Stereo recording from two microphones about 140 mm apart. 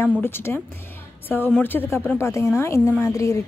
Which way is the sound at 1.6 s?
15° left (ahead or behind).